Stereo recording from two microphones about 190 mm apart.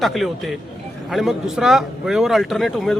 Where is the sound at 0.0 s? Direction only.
Centre (ahead or behind).